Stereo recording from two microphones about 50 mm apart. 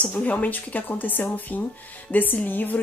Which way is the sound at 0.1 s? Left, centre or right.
Left.